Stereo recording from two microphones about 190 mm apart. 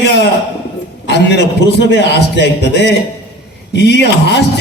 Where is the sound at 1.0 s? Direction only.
65° left (ahead or behind).